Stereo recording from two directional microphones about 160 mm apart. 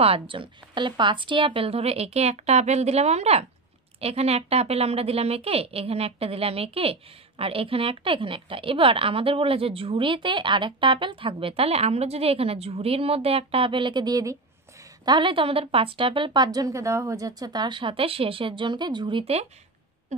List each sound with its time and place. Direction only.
0.0 s a woman's voice: 35° right (ahead or behind)